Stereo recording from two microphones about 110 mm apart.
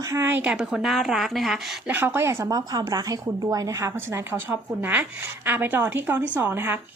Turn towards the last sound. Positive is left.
turn(degrees=-20)  # may be behind; listen again after turning